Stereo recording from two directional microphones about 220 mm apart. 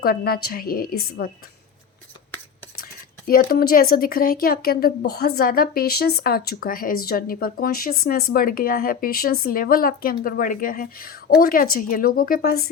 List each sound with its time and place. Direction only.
0.0 s a woman's voice: 45° left (ahead or behind)
2.8 s speech: 40° left (ahead or behind)